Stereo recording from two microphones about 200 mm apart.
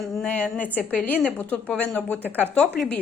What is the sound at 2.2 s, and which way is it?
Speech, 10° right (ahead or behind).